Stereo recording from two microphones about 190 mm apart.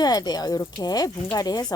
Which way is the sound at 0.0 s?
20° left (ahead or behind).